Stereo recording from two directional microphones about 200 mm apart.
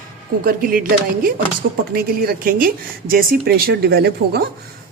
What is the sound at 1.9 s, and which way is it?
Speech, 50° right (ahead or behind).